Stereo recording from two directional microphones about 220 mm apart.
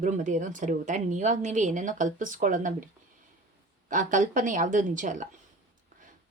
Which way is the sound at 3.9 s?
35° right (ahead or behind).